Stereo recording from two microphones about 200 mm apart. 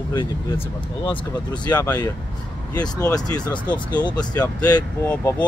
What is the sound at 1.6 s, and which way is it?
Speech, 20° left (ahead or behind).